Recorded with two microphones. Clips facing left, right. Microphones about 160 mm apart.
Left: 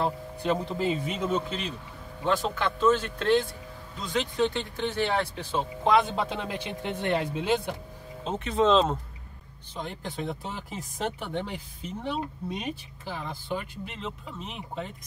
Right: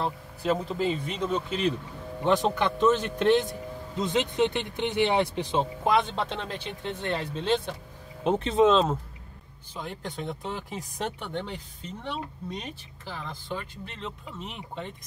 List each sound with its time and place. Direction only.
0.0 s speech: centre (ahead or behind)
2.2 s speech: 20° right (ahead or behind)
5.9 s speech: 5° left (ahead or behind)
8.6 s speech: centre (ahead or behind)